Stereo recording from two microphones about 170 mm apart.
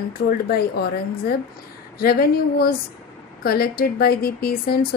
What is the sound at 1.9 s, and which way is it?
A woman's voice, 65° left (ahead or behind).